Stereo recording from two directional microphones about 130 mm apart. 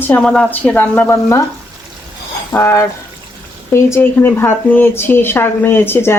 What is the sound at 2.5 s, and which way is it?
Speech, 15° left (ahead or behind).